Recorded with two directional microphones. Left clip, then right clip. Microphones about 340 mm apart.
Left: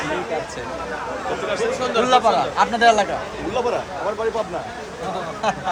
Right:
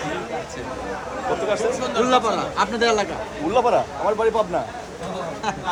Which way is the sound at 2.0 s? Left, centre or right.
Centre.